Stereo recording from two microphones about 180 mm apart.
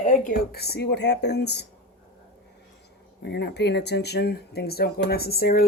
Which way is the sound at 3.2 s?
70° left (ahead or behind).